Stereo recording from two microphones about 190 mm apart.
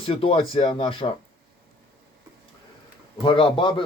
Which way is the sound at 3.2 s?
25° left (ahead or behind).